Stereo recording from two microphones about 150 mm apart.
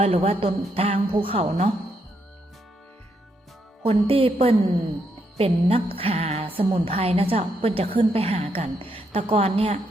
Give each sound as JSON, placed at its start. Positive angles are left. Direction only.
{"t": 0.0, "sound": "a woman's voice", "side_deg": -40}
{"t": 3.8, "sound": "a woman's voice", "side_deg": -40}